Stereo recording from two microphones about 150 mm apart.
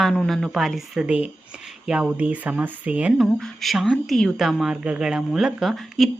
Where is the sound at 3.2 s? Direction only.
5° left (ahead or behind).